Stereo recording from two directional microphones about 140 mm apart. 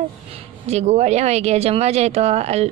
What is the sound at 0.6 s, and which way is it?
Speech, 50° right (ahead or behind).